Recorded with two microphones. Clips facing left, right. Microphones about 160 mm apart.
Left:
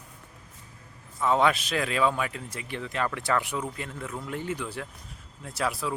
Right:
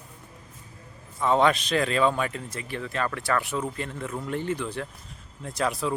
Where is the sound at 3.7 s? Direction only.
5° left (ahead or behind).